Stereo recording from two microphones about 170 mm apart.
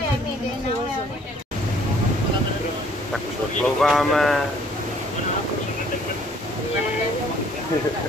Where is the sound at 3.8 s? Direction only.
Centre (ahead or behind).